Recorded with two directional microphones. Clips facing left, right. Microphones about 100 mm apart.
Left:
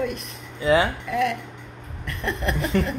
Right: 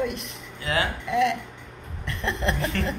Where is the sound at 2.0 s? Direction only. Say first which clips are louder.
Even; 25° right (ahead or behind).